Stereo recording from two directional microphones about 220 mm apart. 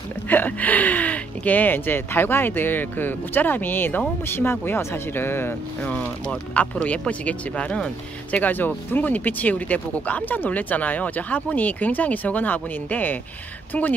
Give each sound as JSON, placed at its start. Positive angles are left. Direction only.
{"t": 0.3, "sound": "speech", "side_deg": 10}